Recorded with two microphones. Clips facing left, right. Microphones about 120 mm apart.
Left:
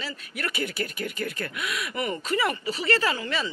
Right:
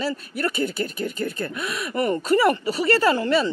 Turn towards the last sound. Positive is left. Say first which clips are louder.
# right 6 dB
turn(degrees=-40)  # may be behind; listen again after turning